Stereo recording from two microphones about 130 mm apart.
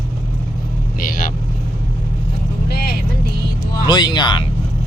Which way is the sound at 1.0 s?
90° left.